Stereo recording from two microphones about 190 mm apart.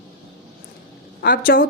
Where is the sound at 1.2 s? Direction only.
50° left (ahead or behind).